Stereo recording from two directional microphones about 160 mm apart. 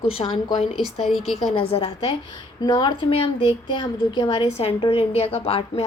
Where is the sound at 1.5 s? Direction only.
40° left (ahead or behind).